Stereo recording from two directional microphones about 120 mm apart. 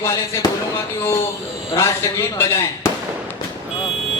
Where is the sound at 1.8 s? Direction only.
25° left (ahead or behind).